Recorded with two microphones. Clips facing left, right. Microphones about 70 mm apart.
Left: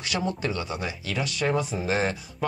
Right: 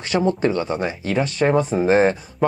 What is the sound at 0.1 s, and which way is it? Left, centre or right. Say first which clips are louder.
Speech: right 10 dB; right.